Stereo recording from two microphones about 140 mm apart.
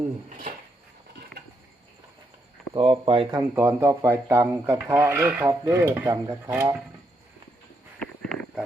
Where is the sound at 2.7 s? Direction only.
40° right (ahead or behind).